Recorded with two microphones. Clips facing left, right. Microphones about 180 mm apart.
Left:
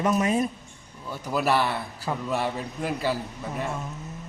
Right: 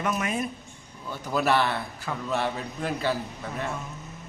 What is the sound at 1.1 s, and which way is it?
A man's voice, 5° left (ahead or behind).